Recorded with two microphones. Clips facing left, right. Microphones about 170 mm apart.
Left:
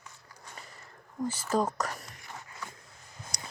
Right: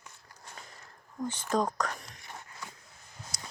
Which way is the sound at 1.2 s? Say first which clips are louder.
Left 1 dB; 5° left (ahead or behind).